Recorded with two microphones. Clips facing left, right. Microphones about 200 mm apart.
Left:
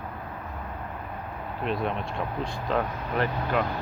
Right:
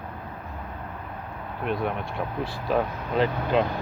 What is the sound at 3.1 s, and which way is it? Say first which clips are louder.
Speech: right 4 dB; 15° right (ahead or behind).